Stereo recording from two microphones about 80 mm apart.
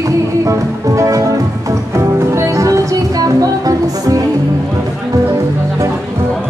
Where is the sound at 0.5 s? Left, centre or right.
Right.